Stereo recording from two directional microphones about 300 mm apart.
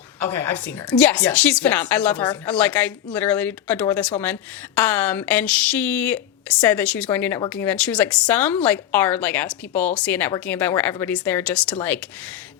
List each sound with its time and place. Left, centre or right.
0.2 s a woman's voice: right
0.9 s a woman's voice: centre